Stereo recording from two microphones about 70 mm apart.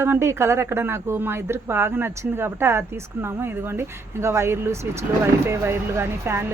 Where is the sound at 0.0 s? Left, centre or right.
Right.